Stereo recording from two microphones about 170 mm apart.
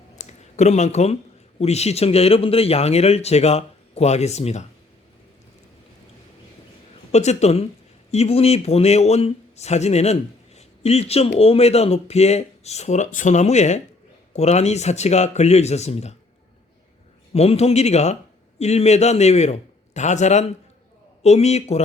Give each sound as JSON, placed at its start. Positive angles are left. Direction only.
{"t": 0.2, "sound": "speech", "side_deg": 40}
{"t": 7.1, "sound": "speech", "side_deg": 40}
{"t": 17.3, "sound": "speech", "side_deg": 35}